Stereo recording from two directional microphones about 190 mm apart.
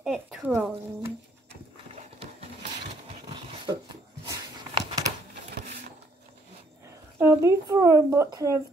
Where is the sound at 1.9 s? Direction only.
30° right (ahead or behind).